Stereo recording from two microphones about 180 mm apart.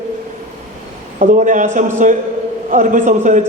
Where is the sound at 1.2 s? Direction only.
45° right (ahead or behind).